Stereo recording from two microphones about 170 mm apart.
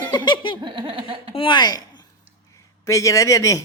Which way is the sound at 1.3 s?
30° left (ahead or behind).